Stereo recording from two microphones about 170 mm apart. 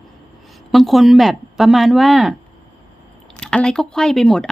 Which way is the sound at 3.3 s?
5° left (ahead or behind).